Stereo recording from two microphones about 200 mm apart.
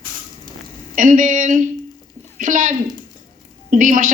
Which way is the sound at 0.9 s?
40° right (ahead or behind).